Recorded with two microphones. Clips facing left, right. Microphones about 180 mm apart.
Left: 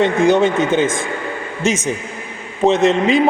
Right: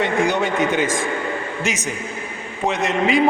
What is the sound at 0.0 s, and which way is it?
A man's voice, 25° left (ahead or behind).